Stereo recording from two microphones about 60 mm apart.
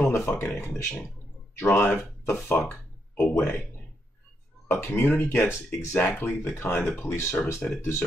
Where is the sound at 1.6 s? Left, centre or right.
Left.